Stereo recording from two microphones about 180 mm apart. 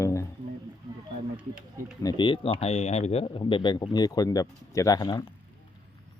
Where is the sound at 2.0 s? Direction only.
25° left (ahead or behind).